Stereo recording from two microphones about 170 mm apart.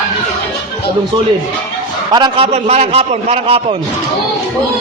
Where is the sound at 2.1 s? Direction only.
25° right (ahead or behind).